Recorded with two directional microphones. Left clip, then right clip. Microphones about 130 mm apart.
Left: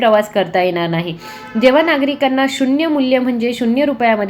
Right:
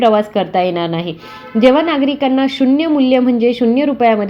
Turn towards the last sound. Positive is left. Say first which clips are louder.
# right 1 dB
turn(degrees=-35)  # may be behind; listen again after turning